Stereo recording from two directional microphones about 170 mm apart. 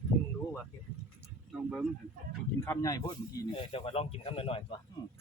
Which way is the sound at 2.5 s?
15° left (ahead or behind).